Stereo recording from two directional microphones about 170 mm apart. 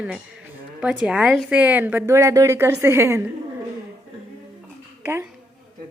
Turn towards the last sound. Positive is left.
turn(degrees=-15)  # may be behind; listen again after turning